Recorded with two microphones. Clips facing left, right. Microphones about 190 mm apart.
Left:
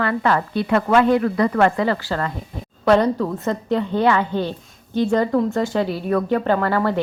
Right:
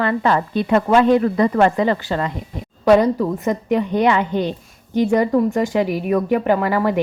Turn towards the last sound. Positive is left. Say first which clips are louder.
# right 2 dB
turn(degrees=-15)  # may be behind; listen again after turning